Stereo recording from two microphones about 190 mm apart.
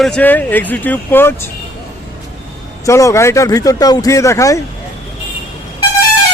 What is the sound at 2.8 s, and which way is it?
Speech, 15° left (ahead or behind).